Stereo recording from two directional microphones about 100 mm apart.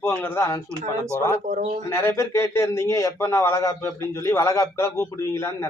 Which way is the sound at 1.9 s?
30° left (ahead or behind).